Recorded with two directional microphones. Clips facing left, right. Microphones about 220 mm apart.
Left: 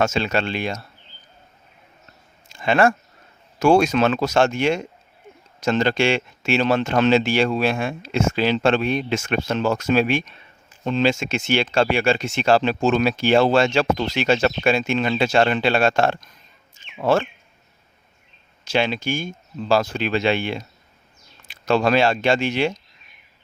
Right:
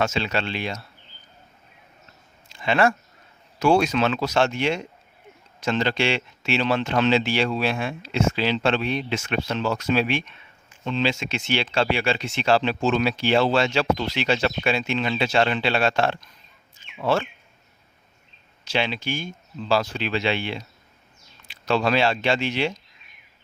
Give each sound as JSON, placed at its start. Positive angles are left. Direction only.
{"t": 0.0, "sound": "speech", "side_deg": 45}
{"t": 2.5, "sound": "a sound", "side_deg": 45}
{"t": 3.6, "sound": "speech", "side_deg": 45}
{"t": 18.6, "sound": "speech", "side_deg": 45}